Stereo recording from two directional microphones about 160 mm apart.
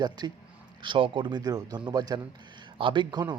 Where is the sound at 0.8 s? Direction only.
30° right (ahead or behind).